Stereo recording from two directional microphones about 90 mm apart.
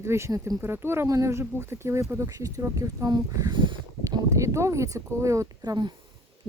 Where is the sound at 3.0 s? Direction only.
50° right (ahead or behind).